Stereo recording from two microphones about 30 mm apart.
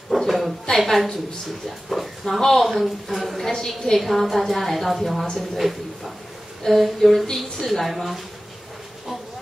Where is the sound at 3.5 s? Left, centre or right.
Centre.